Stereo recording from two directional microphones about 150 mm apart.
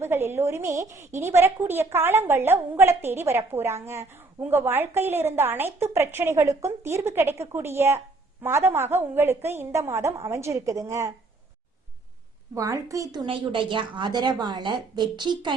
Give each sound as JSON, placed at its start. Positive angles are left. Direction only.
{"t": 0.0, "sound": "a woman's voice", "side_deg": -15}
{"t": 12.5, "sound": "a woman's voice", "side_deg": -20}